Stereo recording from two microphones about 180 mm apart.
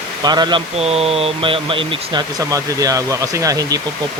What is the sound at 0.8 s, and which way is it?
Speech, 35° right (ahead or behind).